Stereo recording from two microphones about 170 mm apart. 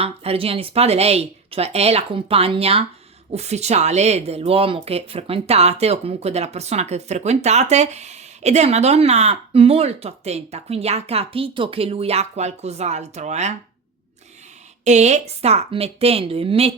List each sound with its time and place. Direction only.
0.0 s speech: 35° right (ahead or behind)
14.8 s speech: 40° right (ahead or behind)